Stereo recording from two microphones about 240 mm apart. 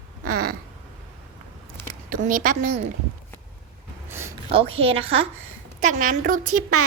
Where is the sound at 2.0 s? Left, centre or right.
Right.